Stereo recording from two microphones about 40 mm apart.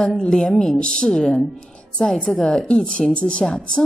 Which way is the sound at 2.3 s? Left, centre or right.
Centre.